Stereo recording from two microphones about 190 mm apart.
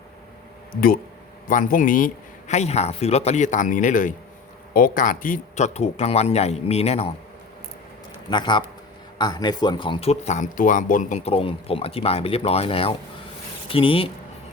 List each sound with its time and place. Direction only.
0.7 s speech: 50° left (ahead or behind); by 7.1 s 35° left (ahead or behind)
8.3 s speech: 25° left (ahead or behind)